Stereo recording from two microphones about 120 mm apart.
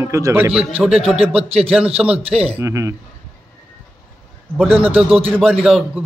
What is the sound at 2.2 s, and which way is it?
Speech, 55° right (ahead or behind).